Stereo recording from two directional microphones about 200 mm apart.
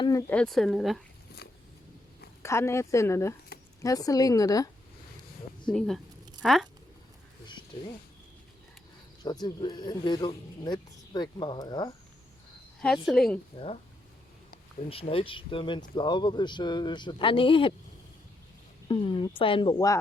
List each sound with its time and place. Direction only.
0.0 s a sound: 15° left (ahead or behind)
0.3 s speech: centre (ahead or behind)
1.4 s a sound: 55° left (ahead or behind)
2.4 s a woman's voice: 15° left (ahead or behind)
5.7 s speech: centre (ahead or behind)
9.2 s speech: 20° left (ahead or behind)
13.1 s speech: centre (ahead or behind)
14.8 s speech: 30° left (ahead or behind)
18.9 s speech: 25° left (ahead or behind)